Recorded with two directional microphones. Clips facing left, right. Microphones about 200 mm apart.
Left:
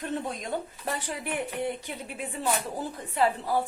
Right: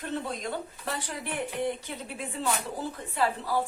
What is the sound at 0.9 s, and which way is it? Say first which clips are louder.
A woman's voice: left 2 dB; 15° left (ahead or behind).